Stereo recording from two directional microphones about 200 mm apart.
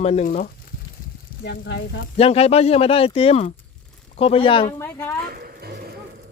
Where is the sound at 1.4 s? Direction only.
55° left (ahead or behind).